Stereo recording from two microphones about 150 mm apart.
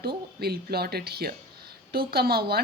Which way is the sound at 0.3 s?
90° right.